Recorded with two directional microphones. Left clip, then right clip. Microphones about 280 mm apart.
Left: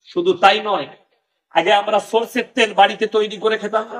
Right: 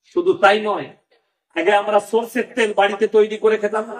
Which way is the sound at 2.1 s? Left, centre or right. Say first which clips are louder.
Left 1 dB; left.